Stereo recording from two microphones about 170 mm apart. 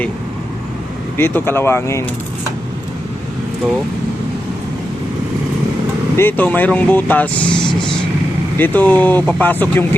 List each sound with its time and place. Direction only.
1.1 s speech: 15° left (ahead or behind)
6.1 s speech: 10° left (ahead or behind)
8.5 s speech: 10° left (ahead or behind)